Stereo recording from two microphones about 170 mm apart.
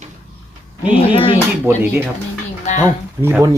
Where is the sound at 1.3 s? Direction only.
10° right (ahead or behind).